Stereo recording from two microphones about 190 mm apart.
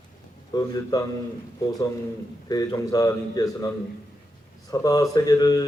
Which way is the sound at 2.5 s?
20° left (ahead or behind).